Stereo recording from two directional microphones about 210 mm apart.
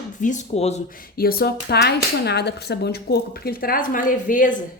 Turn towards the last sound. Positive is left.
turn(degrees=40)  # may be behind; listen again after turning